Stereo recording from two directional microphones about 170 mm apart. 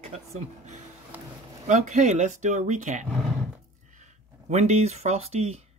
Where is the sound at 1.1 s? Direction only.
10° right (ahead or behind).